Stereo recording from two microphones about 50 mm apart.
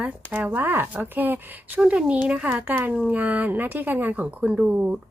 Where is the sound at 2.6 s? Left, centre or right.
Right.